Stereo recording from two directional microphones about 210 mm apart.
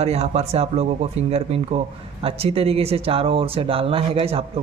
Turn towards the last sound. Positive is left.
turn(degrees=-25)  # may be behind; listen again after turning